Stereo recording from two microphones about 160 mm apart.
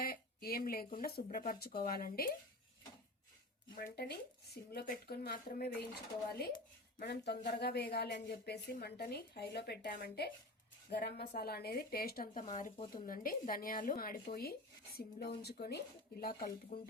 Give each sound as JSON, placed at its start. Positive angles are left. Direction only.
{"t": 0.0, "sound": "a sound", "side_deg": 70}
{"t": 0.9, "sound": "speech", "side_deg": 65}
{"t": 3.8, "sound": "speech", "side_deg": 65}
{"t": 7.0, "sound": "a woman's voice", "side_deg": 90}
{"t": 11.3, "sound": "speech", "side_deg": 80}
{"t": 14.9, "sound": "speech", "side_deg": 90}